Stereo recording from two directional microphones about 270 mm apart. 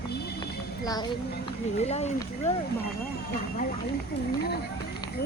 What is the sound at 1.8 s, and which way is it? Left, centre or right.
Speech, left.